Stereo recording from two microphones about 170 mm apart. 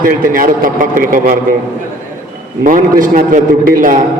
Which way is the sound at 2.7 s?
55° right (ahead or behind).